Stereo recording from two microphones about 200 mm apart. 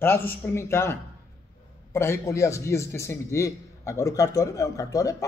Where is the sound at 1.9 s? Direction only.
15° left (ahead or behind).